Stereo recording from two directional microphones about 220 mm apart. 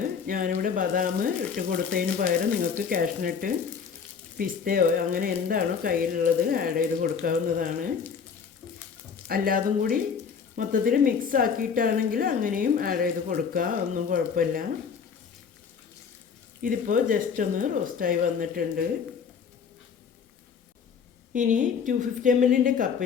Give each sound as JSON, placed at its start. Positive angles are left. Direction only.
{"t": 0.3, "sound": "a woman's voice", "side_deg": -40}
{"t": 9.2, "sound": "a woman's voice", "side_deg": -40}
{"t": 16.6, "sound": "a woman's voice", "side_deg": -40}
{"t": 21.3, "sound": "a woman's voice", "side_deg": -35}